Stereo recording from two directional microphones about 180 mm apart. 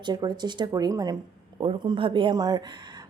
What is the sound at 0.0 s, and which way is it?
Speech, 25° right (ahead or behind).